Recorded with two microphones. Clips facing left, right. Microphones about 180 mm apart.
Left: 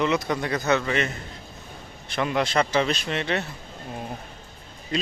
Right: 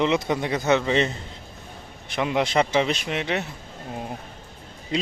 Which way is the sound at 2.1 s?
15° right (ahead or behind).